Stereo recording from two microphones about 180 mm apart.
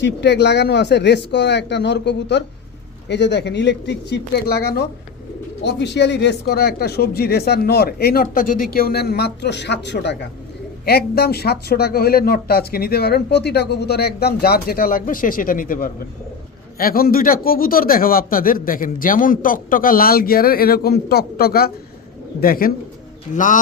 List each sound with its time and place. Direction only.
0.0 s speech: 70° left (ahead or behind)
10.8 s a man's voice: 60° left (ahead or behind)